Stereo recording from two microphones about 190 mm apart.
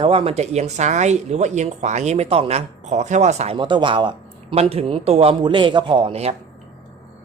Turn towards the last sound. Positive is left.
turn(degrees=-35)  # may be behind; listen again after turning